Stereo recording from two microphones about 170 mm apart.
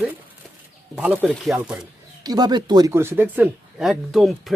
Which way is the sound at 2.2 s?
25° right (ahead or behind).